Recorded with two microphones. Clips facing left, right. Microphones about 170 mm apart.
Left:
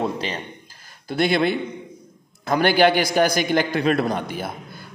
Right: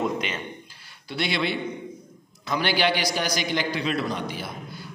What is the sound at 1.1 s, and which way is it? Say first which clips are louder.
A man's voice: left 7 dB; 50° left (ahead or behind).